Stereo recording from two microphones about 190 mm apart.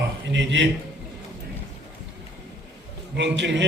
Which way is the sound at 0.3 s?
70° right (ahead or behind).